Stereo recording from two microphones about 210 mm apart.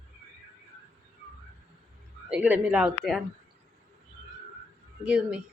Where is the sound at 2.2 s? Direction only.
5° right (ahead or behind).